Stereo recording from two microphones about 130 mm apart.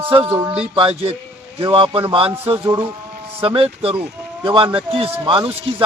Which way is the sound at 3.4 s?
45° right (ahead or behind).